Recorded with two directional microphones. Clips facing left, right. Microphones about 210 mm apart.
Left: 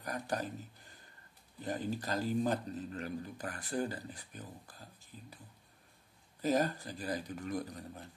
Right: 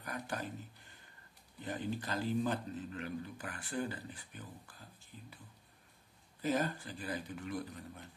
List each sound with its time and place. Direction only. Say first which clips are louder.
0.0 s speech: left 4 dB; 40° left (ahead or behind)
1.6 s speech: left 2 dB; 40° left (ahead or behind)
6.4 s speech: left 3 dB; 40° left (ahead or behind)